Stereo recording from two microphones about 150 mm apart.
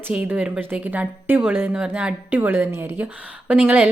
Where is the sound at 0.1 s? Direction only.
10° right (ahead or behind).